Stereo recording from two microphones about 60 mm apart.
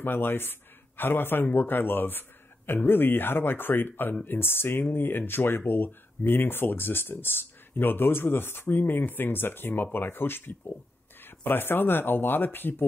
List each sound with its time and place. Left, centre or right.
0.0 s a man's voice: left